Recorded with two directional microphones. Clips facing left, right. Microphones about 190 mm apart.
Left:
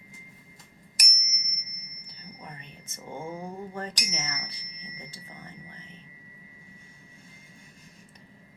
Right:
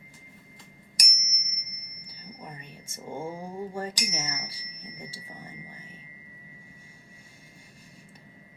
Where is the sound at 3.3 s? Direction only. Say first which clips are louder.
Right 2 dB; 10° right (ahead or behind).